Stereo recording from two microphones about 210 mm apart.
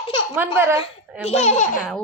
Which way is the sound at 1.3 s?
30° left (ahead or behind).